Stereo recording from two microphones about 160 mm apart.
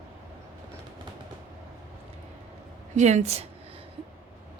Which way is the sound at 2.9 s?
45° right (ahead or behind).